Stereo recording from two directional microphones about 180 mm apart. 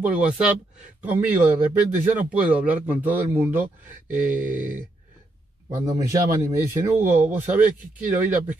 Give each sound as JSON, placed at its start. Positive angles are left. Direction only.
{"t": 0.0, "sound": "a man's voice", "side_deg": -5}
{"t": 5.9, "sound": "a man's voice", "side_deg": -20}